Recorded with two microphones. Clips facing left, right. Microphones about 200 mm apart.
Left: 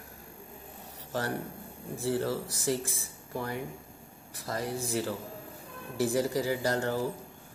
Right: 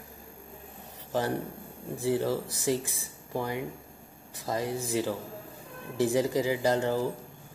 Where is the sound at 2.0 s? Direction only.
20° right (ahead or behind).